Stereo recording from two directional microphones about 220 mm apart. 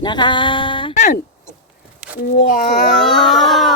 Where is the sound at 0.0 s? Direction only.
20° left (ahead or behind).